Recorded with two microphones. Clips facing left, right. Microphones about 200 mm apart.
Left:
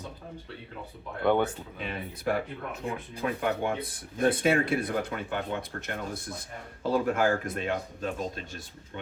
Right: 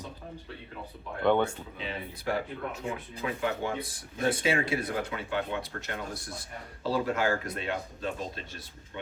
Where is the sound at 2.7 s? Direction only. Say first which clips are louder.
Left 1 dB; 55° left (ahead or behind).